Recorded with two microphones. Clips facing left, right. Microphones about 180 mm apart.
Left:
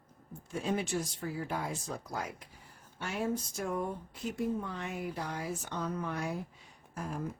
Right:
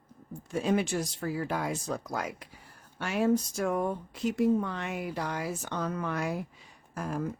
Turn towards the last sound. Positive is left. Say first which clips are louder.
# right 5 dB
turn(degrees=-80)